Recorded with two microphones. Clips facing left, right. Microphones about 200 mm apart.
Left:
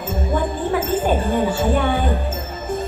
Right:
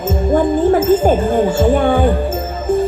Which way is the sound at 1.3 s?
50° right (ahead or behind).